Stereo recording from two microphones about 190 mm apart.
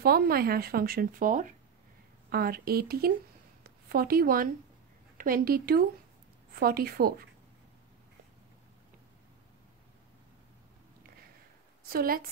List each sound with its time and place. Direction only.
0.0 s a woman's voice: 55° right (ahead or behind)
11.8 s a woman's voice: 50° right (ahead or behind)